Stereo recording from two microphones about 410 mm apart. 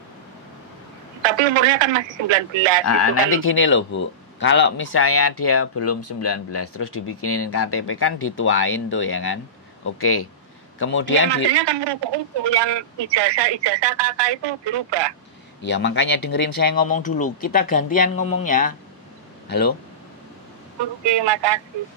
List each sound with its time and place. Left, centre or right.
1.2 s speech: right
2.8 s speech: left
11.5 s a man's voice: right
15.6 s speech: left
21.0 s speech: right